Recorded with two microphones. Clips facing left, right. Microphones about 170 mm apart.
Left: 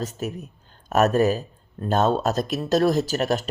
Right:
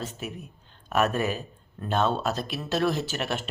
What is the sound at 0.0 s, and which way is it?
Speech, 40° left (ahead or behind).